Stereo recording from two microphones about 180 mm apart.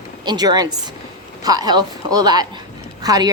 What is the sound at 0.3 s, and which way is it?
A woman's voice, 20° right (ahead or behind).